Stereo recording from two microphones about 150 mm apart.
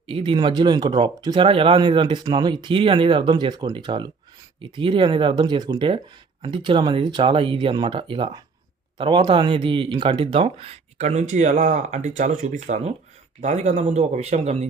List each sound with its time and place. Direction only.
0.1 s speech: 35° right (ahead or behind)